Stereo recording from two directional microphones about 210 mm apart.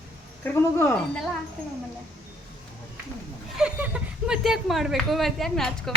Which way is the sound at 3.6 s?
5° right (ahead or behind).